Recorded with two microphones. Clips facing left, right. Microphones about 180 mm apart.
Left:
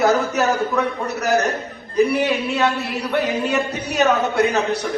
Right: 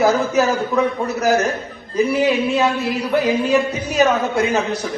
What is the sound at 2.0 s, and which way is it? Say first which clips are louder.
A man's voice: right 1 dB; 65° left (ahead or behind).